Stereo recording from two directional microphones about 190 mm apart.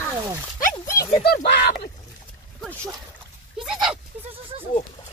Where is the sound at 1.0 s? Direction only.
55° left (ahead or behind).